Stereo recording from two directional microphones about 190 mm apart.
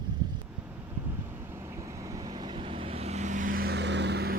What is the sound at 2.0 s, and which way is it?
Vehicle, 20° right (ahead or behind).